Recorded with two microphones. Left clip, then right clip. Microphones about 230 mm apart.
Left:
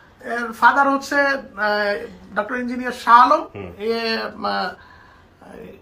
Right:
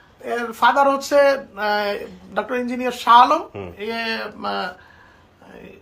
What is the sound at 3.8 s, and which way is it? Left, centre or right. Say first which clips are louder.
Speech: left 3 dB; centre.